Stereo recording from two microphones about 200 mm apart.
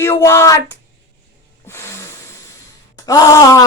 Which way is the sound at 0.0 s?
15° left (ahead or behind).